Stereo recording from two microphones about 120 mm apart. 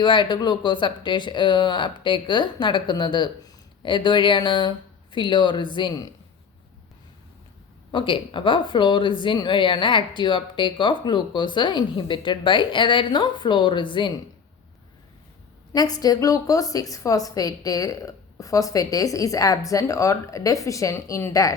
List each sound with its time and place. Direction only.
0.0 s speech: 40° left (ahead or behind)
7.9 s speech: 45° left (ahead or behind)
15.7 s a woman's voice: 30° left (ahead or behind)